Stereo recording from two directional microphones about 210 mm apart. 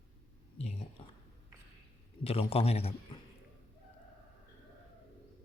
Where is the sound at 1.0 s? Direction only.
25° left (ahead or behind).